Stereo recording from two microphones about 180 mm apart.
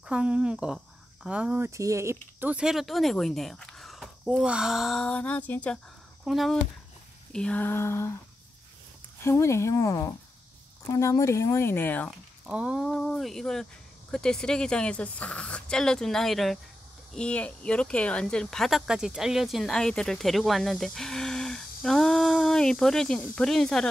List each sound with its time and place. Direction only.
0.0 s speech: 5° right (ahead or behind); by 8.2 s 15° left (ahead or behind)
9.2 s speech: 15° left (ahead or behind)
12.4 s speech: 5° right (ahead or behind)